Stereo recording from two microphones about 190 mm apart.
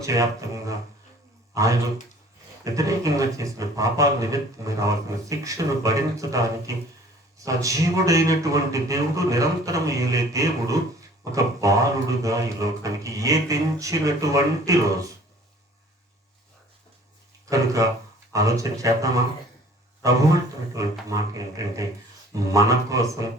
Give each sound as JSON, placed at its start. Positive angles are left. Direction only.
{"t": 0.0, "sound": "a man's voice", "side_deg": -15}
{"t": 17.5, "sound": "a man's voice", "side_deg": -15}